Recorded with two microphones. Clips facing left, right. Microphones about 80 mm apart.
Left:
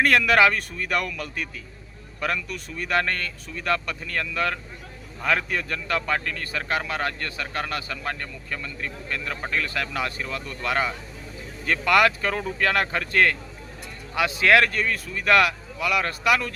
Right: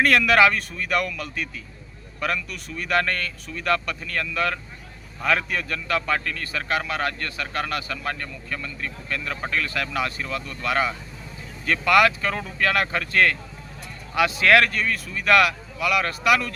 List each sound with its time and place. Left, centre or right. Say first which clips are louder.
0.0 s a man's voice: right 1 dB; left